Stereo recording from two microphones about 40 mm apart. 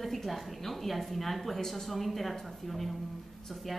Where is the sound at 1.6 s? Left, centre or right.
Centre.